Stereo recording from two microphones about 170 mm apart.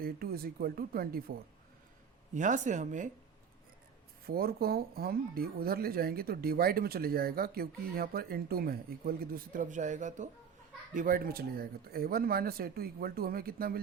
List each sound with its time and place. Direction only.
0.0 s speech: 60° right (ahead or behind)
2.3 s speech: 45° right (ahead or behind)
4.3 s speech: 65° right (ahead or behind); by 10.2 s 45° right (ahead or behind)
10.9 s speech: 55° right (ahead or behind)